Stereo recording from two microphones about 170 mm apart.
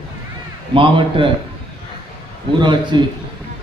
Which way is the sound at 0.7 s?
30° right (ahead or behind).